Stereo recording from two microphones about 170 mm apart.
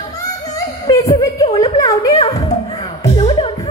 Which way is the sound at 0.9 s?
20° left (ahead or behind).